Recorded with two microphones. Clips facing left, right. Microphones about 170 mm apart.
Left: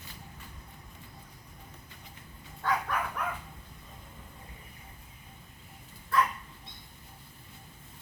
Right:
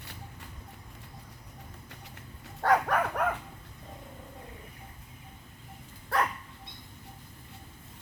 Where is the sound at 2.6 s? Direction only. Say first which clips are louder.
Right 6 dB; 65° right (ahead or behind).